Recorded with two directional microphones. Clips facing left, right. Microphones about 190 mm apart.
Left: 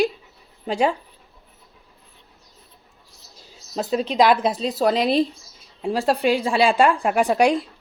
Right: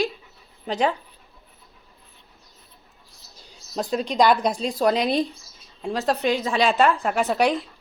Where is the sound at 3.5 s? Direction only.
5° left (ahead or behind).